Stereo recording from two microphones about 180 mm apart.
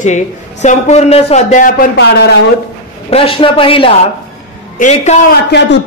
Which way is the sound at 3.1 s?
30° left (ahead or behind).